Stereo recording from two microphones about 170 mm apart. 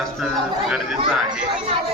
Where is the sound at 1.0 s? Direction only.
5° right (ahead or behind).